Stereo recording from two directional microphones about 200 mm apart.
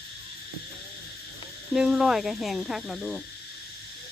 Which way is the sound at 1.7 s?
5° right (ahead or behind).